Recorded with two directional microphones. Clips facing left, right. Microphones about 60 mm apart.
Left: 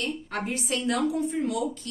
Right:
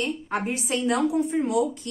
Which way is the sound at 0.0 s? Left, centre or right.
Centre.